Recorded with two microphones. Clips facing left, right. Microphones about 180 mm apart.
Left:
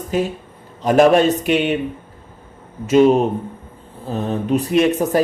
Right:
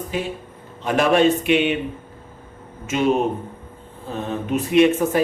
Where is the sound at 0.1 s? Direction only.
40° left (ahead or behind).